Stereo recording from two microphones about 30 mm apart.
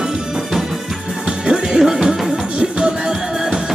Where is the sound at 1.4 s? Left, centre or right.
Centre.